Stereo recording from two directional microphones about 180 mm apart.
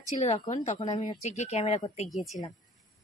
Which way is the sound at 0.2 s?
40° left (ahead or behind).